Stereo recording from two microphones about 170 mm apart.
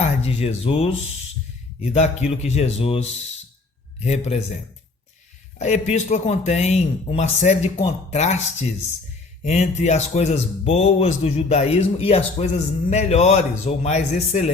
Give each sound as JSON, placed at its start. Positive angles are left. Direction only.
{"t": 0.0, "sound": "speech", "side_deg": 40}
{"t": 5.5, "sound": "speech", "side_deg": 45}